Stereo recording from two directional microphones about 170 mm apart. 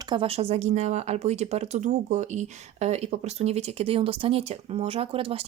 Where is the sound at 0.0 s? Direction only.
30° right (ahead or behind).